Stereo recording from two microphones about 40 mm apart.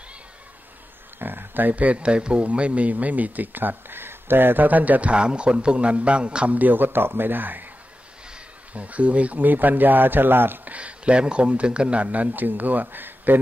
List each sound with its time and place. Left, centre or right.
1.2 s speech: right
5.1 s a man's voice: right
6.6 s speech: right
8.7 s speech: right
10.6 s speech: right